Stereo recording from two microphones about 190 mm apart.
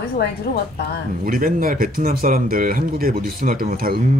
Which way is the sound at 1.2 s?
50° right (ahead or behind).